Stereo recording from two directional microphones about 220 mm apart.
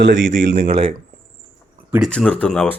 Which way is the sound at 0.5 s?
25° right (ahead or behind).